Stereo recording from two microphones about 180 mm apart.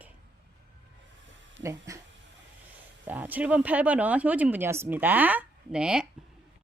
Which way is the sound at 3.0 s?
10° right (ahead or behind).